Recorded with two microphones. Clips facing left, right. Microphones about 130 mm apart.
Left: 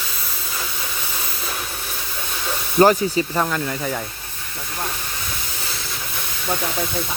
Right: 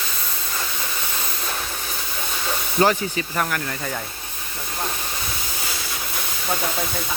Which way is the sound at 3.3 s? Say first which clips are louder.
Left 3 dB; 20° left (ahead or behind).